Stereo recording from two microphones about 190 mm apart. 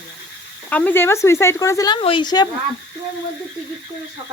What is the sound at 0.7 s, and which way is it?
A woman's voice, 10° left (ahead or behind).